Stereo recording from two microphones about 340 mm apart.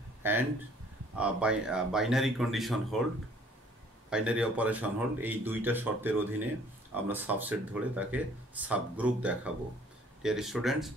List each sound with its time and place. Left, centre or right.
0.2 s a sound: centre
1.1 s speech: centre
4.1 s speech: centre